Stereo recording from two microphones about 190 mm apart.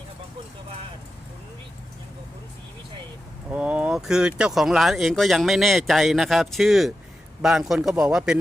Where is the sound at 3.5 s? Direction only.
5° right (ahead or behind).